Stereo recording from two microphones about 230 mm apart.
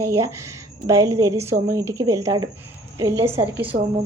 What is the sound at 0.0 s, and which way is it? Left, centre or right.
A woman's voice, centre.